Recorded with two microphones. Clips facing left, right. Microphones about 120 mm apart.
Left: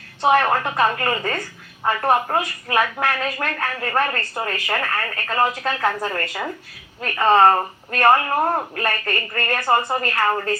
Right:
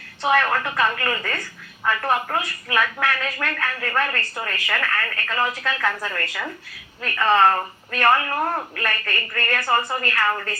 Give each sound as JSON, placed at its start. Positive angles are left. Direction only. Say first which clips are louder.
{"t": 0.2, "sound": "a woman's voice", "louder": "left 3 dB", "side_deg": 25}
{"t": 5.3, "sound": "speech", "louder": "left 4 dB", "side_deg": 30}
{"t": 9.6, "sound": "a woman's voice", "louder": "left 3 dB", "side_deg": 20}
{"t": 9.9, "sound": "speech", "louder": "left 3 dB", "side_deg": 35}